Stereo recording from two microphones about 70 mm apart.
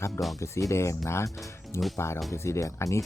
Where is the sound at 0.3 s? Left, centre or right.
Left.